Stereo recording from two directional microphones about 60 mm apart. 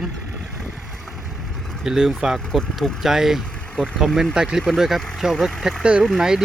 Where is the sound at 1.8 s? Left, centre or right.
Centre.